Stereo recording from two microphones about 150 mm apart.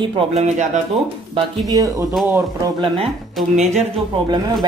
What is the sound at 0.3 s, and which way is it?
Speech, 45° right (ahead or behind).